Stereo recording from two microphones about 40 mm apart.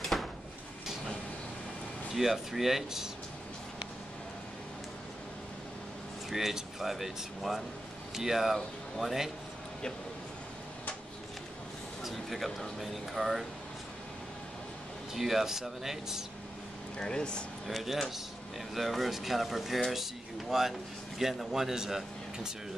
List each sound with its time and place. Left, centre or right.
0.0 s a sound: centre
2.1 s speech: centre
6.3 s speech: centre
12.0 s speech: centre
15.1 s speech: centre
17.0 s speech: left
17.6 s speech: centre